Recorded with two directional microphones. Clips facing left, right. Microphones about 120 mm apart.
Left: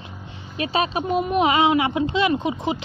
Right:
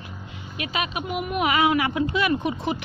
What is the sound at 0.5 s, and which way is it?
Speech, 30° left (ahead or behind).